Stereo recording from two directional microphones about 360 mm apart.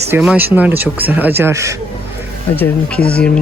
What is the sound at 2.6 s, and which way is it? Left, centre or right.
Speech, centre.